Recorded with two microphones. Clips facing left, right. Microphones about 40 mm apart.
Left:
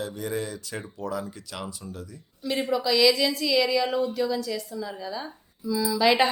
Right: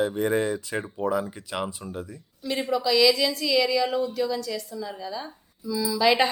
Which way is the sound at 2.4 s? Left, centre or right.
Centre.